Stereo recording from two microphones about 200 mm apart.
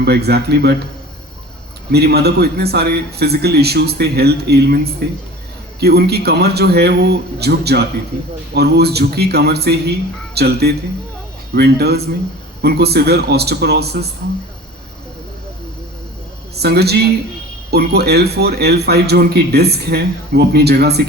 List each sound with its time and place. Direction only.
0.0 s a man's voice: 55° right (ahead or behind)
1.9 s a man's voice: 55° right (ahead or behind)
16.6 s a man's voice: 55° right (ahead or behind)